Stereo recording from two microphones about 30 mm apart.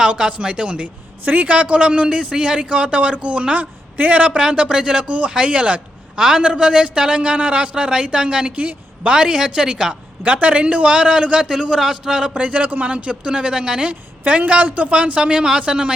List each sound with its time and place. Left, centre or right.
0.0 s speech: right
1.2 s a woman's voice: right
1.5 s speech: right
3.9 s a man's voice: right
4.2 s speech: right
5.0 s speech: right
6.1 s speech: right
7.9 s speech: right
8.5 s a woman's voice: right
9.1 s speech: right
10.2 s speech: right
10.8 s a man's voice: right
12.3 s speech: right
14.3 s speech: right